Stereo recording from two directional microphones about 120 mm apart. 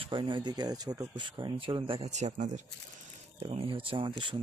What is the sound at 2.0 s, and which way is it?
Speech, 75° right (ahead or behind).